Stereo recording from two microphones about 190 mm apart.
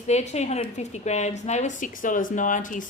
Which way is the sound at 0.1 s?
35° left (ahead or behind).